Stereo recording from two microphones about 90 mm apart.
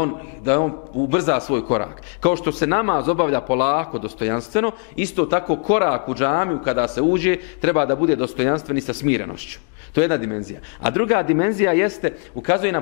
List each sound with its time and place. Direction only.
0.0 s a man's voice: 20° left (ahead or behind)